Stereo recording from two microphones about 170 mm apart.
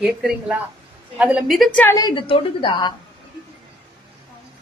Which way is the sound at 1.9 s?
25° left (ahead or behind).